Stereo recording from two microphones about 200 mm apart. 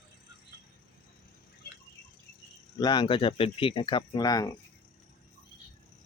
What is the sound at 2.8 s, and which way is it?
Speech, 20° left (ahead or behind).